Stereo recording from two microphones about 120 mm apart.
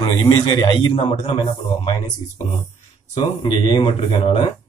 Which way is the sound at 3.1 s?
45° left (ahead or behind).